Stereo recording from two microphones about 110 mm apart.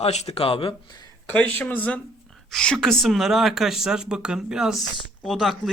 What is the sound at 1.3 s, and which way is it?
Speech, 15° left (ahead or behind).